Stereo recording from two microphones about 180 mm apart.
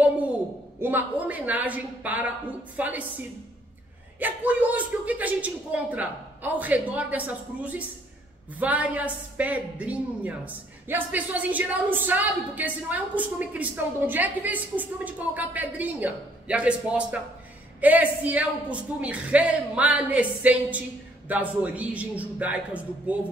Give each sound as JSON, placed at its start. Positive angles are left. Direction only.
{"t": 0.7, "sound": "a woman's voice", "side_deg": -10}
{"t": 4.2, "sound": "a woman's voice", "side_deg": -10}